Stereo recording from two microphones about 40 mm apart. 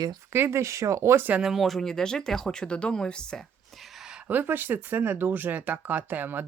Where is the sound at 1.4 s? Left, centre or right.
Centre.